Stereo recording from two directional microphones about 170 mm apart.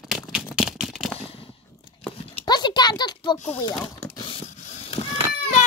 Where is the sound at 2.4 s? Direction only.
25° left (ahead or behind).